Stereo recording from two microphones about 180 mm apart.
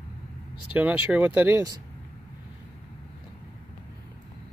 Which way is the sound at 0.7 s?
10° right (ahead or behind).